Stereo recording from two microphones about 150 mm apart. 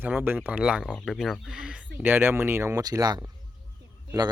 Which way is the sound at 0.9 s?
5° left (ahead or behind).